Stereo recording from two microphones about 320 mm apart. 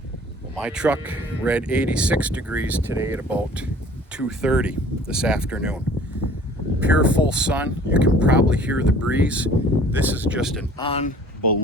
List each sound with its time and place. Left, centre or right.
0.5 s speech: centre
10.8 s speech: centre